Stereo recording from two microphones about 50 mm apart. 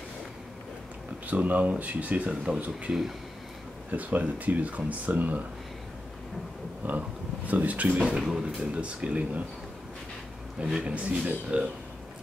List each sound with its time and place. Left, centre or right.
1.2 s speech: right
3.9 s speech: right
6.9 s speech: right
8.0 s speech: centre
10.7 s speech: centre
11.1 s speech: right